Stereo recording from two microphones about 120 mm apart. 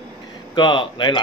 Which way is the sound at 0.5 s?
40° left (ahead or behind).